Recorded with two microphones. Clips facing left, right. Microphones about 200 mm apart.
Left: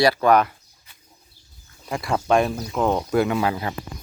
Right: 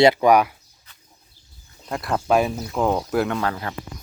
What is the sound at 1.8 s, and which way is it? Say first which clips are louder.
Speech: even; centre (ahead or behind).